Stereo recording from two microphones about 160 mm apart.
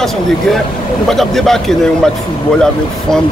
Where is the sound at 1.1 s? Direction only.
Centre (ahead or behind).